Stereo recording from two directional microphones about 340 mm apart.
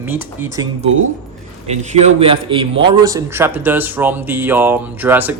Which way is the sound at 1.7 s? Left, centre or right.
Centre.